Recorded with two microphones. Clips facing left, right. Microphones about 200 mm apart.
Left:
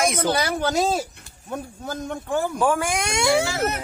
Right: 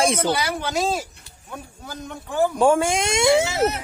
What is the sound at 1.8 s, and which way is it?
Speech, 50° left (ahead or behind).